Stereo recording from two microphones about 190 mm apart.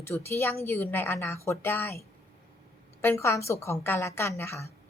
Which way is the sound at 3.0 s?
15° left (ahead or behind).